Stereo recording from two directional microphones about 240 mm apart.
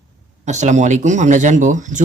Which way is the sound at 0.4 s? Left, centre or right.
Right.